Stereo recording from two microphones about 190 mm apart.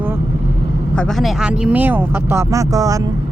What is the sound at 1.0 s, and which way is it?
Speech, centre (ahead or behind).